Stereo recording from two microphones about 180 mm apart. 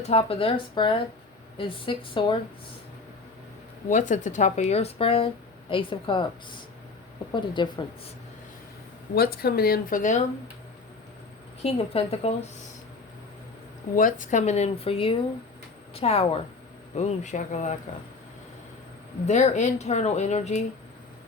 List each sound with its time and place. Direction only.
0.0 s speech: 30° left (ahead or behind)
3.8 s speech: 45° left (ahead or behind); by 8.1 s 25° left (ahead or behind)
9.1 s speech: 60° left (ahead or behind)
11.6 s speech: 35° left (ahead or behind)
13.9 s speech: 45° left (ahead or behind)
19.3 s speech: 40° left (ahead or behind)